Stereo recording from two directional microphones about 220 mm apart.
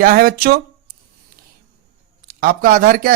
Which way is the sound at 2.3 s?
40° right (ahead or behind).